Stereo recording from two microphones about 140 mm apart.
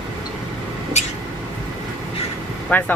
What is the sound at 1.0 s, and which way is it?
Vehicle, 55° left (ahead or behind).